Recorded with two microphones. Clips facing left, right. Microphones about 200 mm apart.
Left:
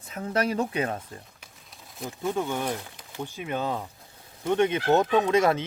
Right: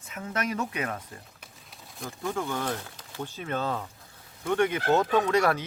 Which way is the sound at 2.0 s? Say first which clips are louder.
Left 3 dB; 20° left (ahead or behind).